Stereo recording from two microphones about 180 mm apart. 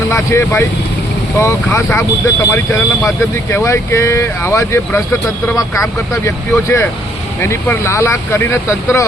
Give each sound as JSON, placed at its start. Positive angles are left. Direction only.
{"t": 0.1, "sound": "speech", "side_deg": 15}